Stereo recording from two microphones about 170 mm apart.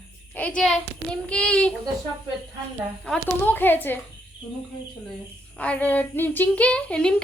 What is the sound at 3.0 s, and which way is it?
Speech, 10° left (ahead or behind).